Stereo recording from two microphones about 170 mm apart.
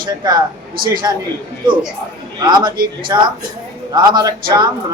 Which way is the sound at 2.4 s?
25° right (ahead or behind).